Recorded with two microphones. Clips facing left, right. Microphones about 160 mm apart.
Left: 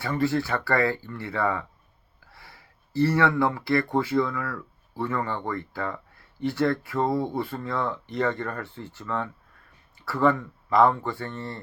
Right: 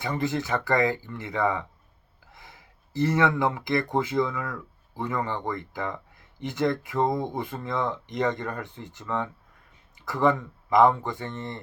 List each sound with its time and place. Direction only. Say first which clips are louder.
0.0 s speech: left 3 dB; 20° right (ahead or behind)